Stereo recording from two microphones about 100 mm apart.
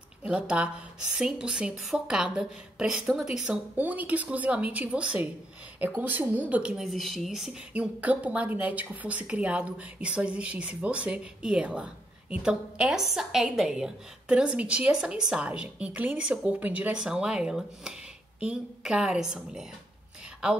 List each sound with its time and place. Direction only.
0.2 s a woman's voice: 10° right (ahead or behind)
7.7 s a woman's voice: 15° right (ahead or behind)